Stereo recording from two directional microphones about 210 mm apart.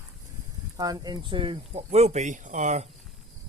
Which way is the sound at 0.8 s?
20° right (ahead or behind).